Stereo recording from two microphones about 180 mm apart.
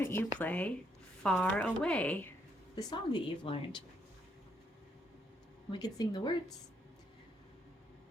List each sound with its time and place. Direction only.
0.0 s speech: 10° left (ahead or behind)
2.7 s a woman's voice: 25° left (ahead or behind)
5.7 s a woman's voice: 20° left (ahead or behind)